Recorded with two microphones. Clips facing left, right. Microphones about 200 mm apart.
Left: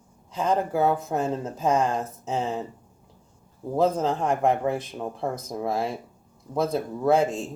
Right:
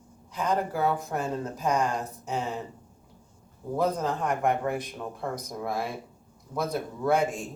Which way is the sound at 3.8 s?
25° left (ahead or behind).